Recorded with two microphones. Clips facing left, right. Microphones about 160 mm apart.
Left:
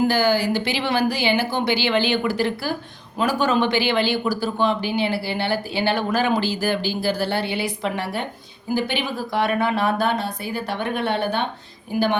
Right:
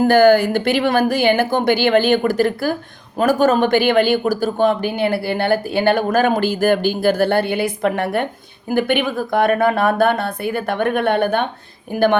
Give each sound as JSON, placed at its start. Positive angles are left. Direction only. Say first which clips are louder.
{"t": 0.0, "sound": "speech", "louder": "right 8 dB", "side_deg": -50}